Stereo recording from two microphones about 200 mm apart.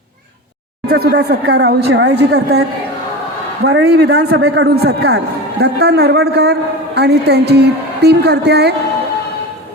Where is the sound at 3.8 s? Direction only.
55° right (ahead or behind).